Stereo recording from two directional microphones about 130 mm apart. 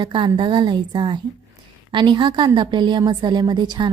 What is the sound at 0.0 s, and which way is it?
A woman's voice, 40° right (ahead or behind).